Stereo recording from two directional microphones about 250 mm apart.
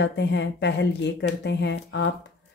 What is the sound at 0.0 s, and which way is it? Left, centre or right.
Speech, left.